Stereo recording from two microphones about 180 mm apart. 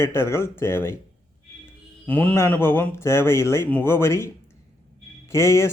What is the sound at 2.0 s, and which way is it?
Speech, 10° left (ahead or behind).